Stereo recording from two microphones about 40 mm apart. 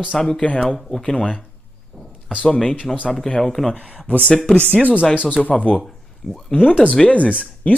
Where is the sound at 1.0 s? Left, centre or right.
Left.